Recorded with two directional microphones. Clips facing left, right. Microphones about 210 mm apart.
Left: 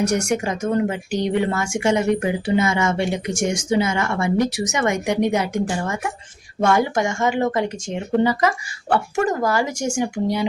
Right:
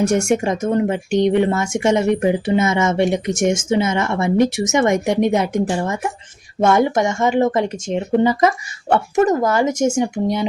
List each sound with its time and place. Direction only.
0.1 s speech: 25° right (ahead or behind)
6.6 s speech: 20° right (ahead or behind)